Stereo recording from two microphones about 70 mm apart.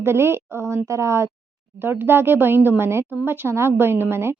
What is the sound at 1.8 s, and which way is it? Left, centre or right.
A woman's voice, right.